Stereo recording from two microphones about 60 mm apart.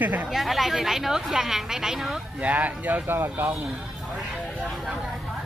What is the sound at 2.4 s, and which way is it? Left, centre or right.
Speech, right.